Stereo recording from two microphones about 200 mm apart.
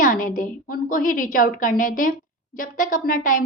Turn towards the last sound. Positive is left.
turn(degrees=40)  # may be behind; listen again after turning